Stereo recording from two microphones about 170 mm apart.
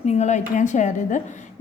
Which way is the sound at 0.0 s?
40° left (ahead or behind).